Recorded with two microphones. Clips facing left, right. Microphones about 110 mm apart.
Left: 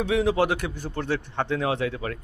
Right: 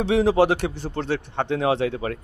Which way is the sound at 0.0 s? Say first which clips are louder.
Right 4 dB; 30° right (ahead or behind).